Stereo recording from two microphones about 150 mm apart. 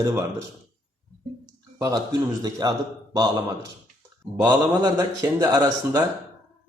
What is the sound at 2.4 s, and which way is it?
A man's voice, 25° right (ahead or behind).